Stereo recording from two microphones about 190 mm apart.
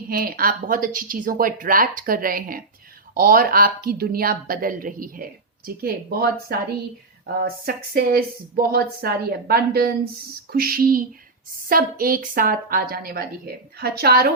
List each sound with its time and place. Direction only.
0.1 s a woman's voice: 50° right (ahead or behind)